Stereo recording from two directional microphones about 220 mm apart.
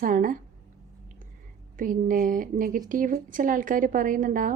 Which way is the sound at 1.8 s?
35° right (ahead or behind).